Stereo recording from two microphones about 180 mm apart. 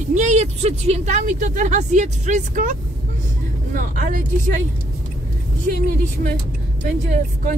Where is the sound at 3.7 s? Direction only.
45° right (ahead or behind).